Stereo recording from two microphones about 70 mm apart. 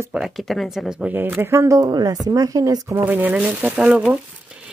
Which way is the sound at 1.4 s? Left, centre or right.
Right.